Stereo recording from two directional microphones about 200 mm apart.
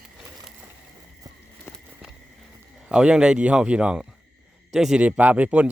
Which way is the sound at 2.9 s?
5° right (ahead or behind).